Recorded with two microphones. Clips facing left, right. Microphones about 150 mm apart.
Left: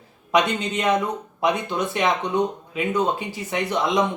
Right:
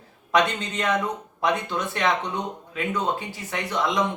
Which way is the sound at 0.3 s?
15° left (ahead or behind).